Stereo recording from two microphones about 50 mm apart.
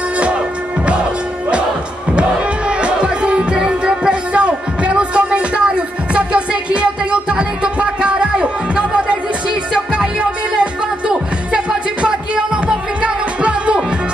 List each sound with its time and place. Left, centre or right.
2.1 s music: right
11.1 s music: centre